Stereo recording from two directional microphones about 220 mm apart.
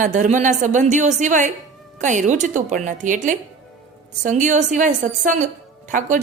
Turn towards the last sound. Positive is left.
turn(degrees=-35)  # may be behind; listen again after turning